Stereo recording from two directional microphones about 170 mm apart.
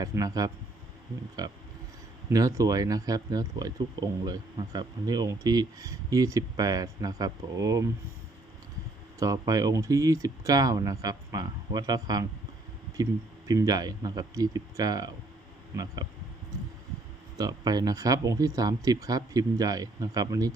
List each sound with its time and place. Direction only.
0.0 s speech: 20° right (ahead or behind)
9.1 s speech: 20° right (ahead or behind)
17.3 s speech: 25° right (ahead or behind)